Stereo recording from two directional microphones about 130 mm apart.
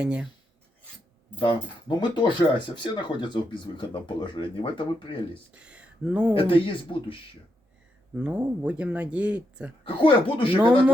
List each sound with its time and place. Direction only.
0.0 s speech: 10° right (ahead or behind)
2.0 s speech: 35° left (ahead or behind)
5.5 s speech: 10° right (ahead or behind)
6.3 s speech: 45° left (ahead or behind)
8.1 s speech: 10° right (ahead or behind)
9.8 s speech: 40° left (ahead or behind)
10.6 s speech: 10° right (ahead or behind)